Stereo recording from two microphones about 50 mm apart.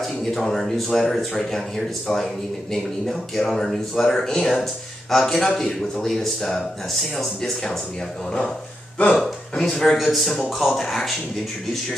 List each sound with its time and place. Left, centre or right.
0.0 s speech: centre
8.9 s speech: left
9.2 s a man's voice: centre